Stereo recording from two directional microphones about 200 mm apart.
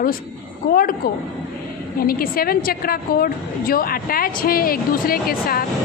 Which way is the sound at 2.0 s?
45° left (ahead or behind).